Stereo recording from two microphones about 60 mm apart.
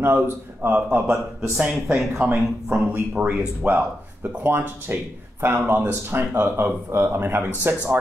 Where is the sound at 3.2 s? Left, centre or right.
Right.